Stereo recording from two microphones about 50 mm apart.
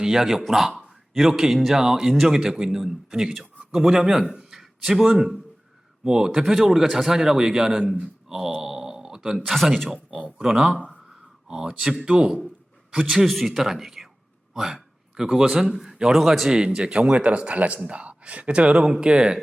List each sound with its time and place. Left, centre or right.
0.0 s a man's voice: centre
8.6 s a sound: centre
9.5 s speech: centre
10.1 s speech: right
13.2 s a man's voice: centre
16.5 s speech: centre